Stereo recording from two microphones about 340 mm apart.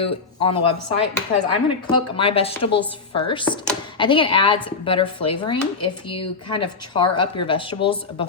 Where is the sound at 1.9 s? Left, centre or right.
Centre.